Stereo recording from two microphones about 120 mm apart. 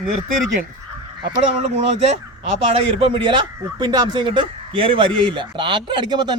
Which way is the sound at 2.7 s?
50° right (ahead or behind).